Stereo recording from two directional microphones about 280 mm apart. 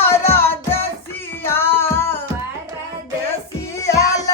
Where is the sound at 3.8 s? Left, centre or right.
Centre.